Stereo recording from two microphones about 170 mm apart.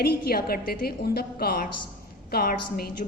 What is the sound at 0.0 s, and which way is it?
A woman's voice, 65° left (ahead or behind).